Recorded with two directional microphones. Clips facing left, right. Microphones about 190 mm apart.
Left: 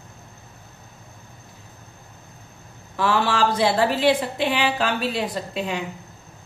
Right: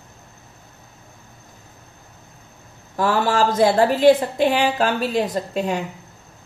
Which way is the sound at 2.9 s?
45° right (ahead or behind).